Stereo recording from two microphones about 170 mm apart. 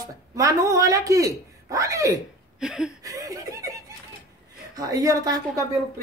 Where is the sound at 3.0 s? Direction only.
20° right (ahead or behind).